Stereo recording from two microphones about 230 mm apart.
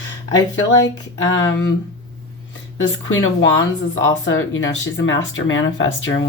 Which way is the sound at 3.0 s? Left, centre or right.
Left.